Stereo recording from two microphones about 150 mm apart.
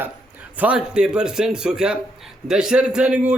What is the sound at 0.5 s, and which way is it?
A man's voice, 10° right (ahead or behind).